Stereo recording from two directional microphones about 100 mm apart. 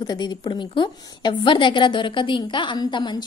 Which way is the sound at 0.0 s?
45° left (ahead or behind).